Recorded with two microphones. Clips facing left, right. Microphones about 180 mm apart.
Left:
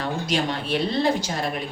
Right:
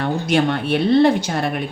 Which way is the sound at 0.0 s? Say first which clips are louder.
Right 7 dB; 55° right (ahead or behind).